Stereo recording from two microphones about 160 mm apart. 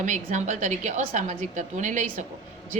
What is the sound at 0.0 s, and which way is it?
A woman's voice, 50° right (ahead or behind).